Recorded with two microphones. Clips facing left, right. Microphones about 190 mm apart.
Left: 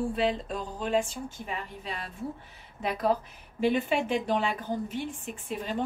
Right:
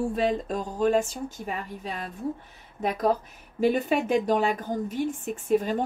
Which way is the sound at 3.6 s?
40° right (ahead or behind).